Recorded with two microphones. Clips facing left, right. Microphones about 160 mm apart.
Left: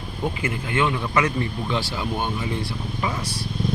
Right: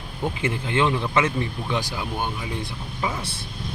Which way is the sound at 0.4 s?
30° right (ahead or behind).